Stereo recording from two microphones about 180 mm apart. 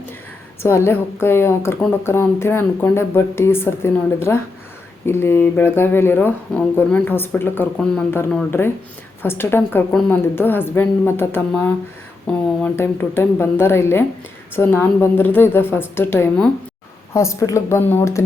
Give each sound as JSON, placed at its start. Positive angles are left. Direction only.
{"t": 0.6, "sound": "speech", "side_deg": 15}